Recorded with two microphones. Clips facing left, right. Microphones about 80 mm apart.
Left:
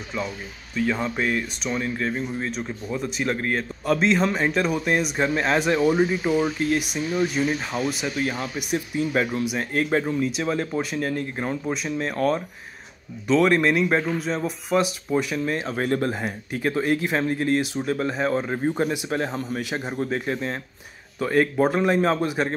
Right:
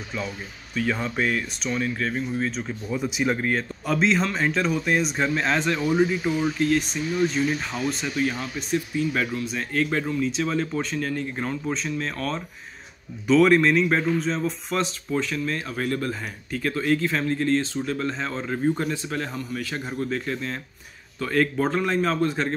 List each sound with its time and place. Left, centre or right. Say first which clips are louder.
0.7 s speech: left 1 dB; centre
13.3 s speech: right 1 dB; centre